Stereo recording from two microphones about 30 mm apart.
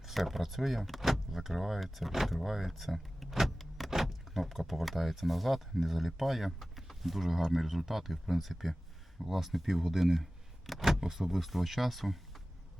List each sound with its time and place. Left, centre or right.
0.0 s speech: centre
3.4 s vehicle: centre
3.8 s speech: centre